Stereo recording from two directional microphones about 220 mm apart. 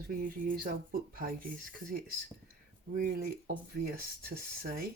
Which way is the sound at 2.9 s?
40° right (ahead or behind).